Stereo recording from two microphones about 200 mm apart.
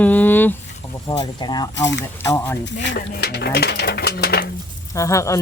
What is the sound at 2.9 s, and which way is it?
Speech, 55° left (ahead or behind).